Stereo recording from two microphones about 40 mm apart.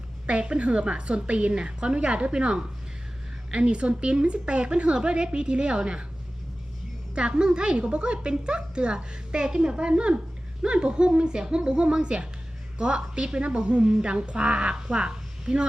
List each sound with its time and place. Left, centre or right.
0.3 s a woman's voice: right
7.2 s a woman's voice: right